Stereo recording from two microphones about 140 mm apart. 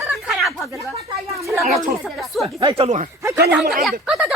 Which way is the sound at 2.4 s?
40° right (ahead or behind).